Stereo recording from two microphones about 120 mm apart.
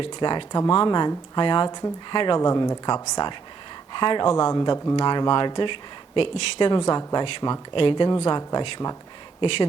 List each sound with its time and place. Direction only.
0.0 s speech: 40° left (ahead or behind)
2.4 s speech: 30° left (ahead or behind)
9.4 s speech: 45° left (ahead or behind)